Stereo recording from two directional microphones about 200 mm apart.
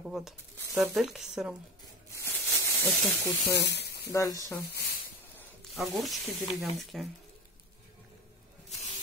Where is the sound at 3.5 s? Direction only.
55° left (ahead or behind).